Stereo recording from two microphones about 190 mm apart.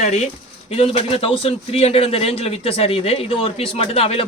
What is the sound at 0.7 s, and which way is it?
A man's voice, 30° left (ahead or behind).